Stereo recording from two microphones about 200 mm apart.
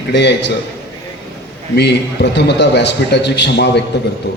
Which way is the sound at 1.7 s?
55° left (ahead or behind).